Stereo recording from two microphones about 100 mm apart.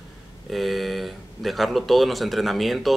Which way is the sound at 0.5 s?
Centre (ahead or behind).